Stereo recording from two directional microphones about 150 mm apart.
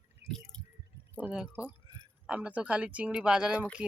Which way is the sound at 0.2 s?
45° left (ahead or behind).